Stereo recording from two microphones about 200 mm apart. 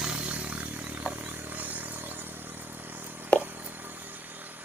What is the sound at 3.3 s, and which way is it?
Plop, 10° right (ahead or behind).